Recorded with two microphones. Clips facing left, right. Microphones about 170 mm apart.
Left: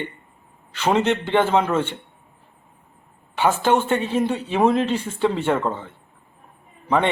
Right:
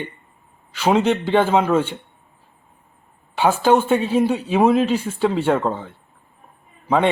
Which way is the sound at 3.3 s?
10° right (ahead or behind).